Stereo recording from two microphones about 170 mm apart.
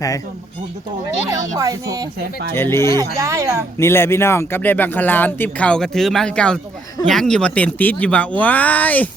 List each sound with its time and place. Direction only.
1.5 s a woman's voice: 20° right (ahead or behind)
2.6 s speech: 15° left (ahead or behind)
2.9 s a woman's voice: 20° right (ahead or behind)
3.8 s speech: 15° left (ahead or behind)